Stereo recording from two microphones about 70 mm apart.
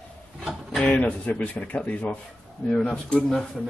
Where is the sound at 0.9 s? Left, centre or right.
Left.